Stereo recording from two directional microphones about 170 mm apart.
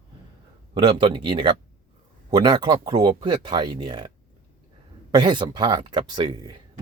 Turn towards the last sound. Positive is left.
turn(degrees=-25)  # may be behind; listen again after turning